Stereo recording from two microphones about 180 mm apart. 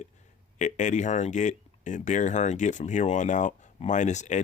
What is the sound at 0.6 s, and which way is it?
Speech, 40° left (ahead or behind).